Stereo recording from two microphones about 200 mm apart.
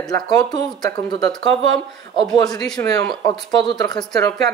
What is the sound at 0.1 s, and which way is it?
Speech, 20° left (ahead or behind).